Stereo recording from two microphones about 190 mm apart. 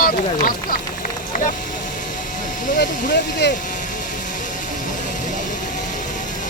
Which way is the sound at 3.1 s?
60° left (ahead or behind).